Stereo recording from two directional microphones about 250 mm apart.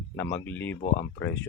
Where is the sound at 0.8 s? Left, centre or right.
Left.